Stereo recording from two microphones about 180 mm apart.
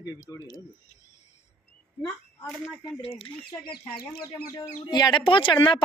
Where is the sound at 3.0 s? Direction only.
30° left (ahead or behind).